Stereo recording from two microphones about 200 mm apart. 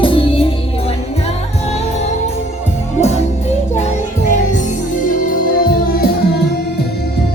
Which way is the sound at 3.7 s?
35° left (ahead or behind).